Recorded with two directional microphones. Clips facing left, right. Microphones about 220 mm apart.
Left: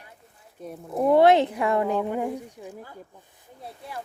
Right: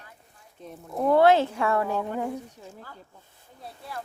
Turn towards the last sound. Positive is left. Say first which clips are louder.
# left 1 dB
turn(degrees=20)  # may be behind; listen again after turning